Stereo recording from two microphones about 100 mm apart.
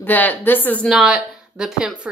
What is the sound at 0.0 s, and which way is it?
Speech, 20° left (ahead or behind).